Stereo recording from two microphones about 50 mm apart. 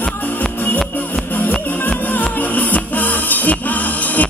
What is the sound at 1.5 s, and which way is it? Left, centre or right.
Music, left.